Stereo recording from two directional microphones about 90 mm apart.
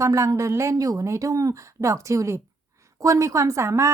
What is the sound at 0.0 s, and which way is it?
A woman's voice, 35° right (ahead or behind).